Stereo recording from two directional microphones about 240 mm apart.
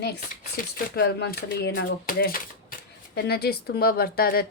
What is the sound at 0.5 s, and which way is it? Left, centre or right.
Speech, left.